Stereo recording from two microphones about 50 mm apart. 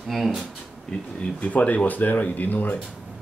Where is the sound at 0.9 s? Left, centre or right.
Left.